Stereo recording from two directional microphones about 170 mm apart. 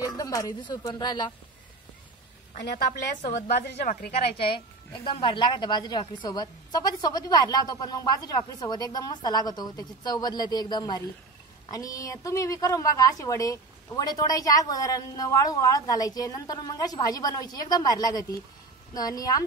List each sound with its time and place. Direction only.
0.0 s speech: 20° left (ahead or behind)
2.6 s a woman's voice: 75° left (ahead or behind)
4.1 s a woman's voice: 30° left (ahead or behind)